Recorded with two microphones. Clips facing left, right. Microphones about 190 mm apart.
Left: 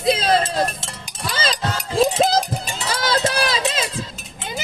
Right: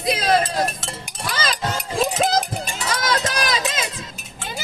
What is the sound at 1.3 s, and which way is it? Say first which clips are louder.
Chink: left 1 dB; 30° left (ahead or behind).